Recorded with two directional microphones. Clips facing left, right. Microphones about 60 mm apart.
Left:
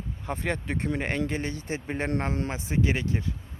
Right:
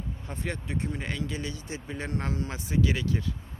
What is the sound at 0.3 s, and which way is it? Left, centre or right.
Speech, left.